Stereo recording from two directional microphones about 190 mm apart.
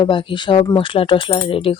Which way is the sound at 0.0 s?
25° left (ahead or behind).